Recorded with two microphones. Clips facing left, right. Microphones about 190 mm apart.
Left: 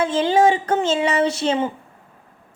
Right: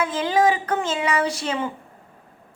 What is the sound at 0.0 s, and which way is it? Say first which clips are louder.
A woman's voice: left 4 dB; 30° left (ahead or behind).